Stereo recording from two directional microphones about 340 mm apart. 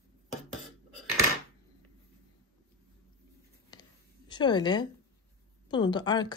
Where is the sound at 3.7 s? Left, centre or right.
Centre.